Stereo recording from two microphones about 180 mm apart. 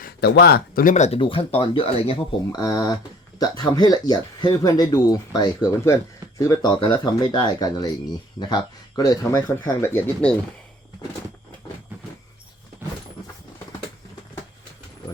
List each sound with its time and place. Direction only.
0.0 s speech: 60° left (ahead or behind); by 10.3 s 10° left (ahead or behind)